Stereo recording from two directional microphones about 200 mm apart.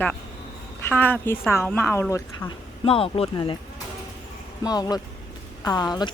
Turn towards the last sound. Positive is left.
turn(degrees=20)  # may be behind; listen again after turning